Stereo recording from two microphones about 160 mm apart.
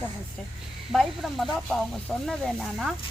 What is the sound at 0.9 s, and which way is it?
Speech, centre (ahead or behind).